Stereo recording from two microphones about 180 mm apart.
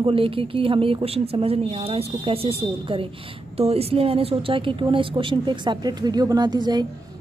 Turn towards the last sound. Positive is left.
turn(degrees=-25)  # may be behind; listen again after turning